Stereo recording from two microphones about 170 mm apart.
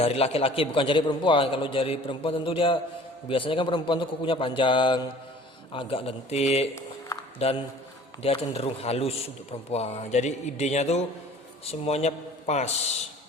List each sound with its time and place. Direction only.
0.0 s a man's voice: 35° left (ahead or behind)